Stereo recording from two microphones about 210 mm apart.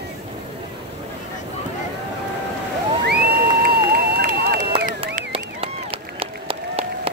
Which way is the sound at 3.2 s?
50° right (ahead or behind).